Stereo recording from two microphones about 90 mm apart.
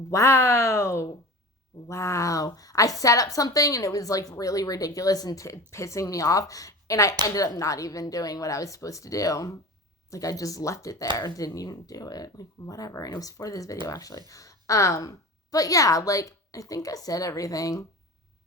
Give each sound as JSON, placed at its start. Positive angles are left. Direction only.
{"t": 0.1, "sound": "a woman's voice", "side_deg": 35}